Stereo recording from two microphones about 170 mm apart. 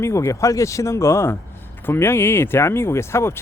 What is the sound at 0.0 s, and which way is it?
Speech, 15° left (ahead or behind).